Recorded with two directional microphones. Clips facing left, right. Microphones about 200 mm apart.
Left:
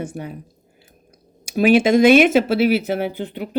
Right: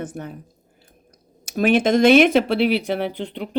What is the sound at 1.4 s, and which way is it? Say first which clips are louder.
Speech: left 3 dB; 10° left (ahead or behind).